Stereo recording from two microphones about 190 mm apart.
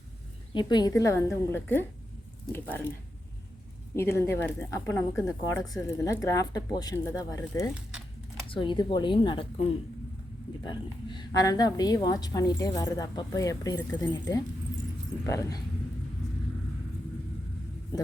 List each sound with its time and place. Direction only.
0.5 s speech: 20° left (ahead or behind)
3.9 s a woman's voice: 15° left (ahead or behind)
10.6 s a woman's voice: 25° left (ahead or behind)